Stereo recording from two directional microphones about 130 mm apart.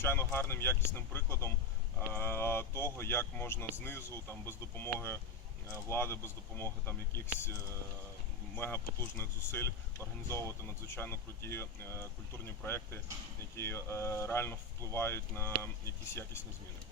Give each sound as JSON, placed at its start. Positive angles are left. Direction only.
{"t": 0.0, "sound": "speech", "side_deg": 15}
{"t": 8.5, "sound": "speech", "side_deg": 15}